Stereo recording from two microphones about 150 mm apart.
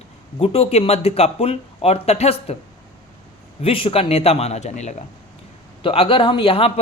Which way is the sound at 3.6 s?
35° left (ahead or behind).